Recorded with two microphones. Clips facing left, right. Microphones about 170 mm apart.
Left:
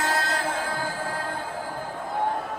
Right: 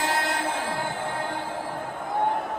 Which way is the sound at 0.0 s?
20° right (ahead or behind).